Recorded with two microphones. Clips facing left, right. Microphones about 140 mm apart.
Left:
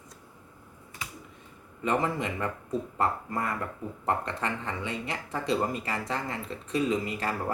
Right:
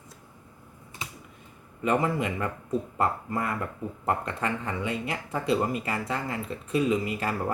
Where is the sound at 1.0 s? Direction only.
20° right (ahead or behind).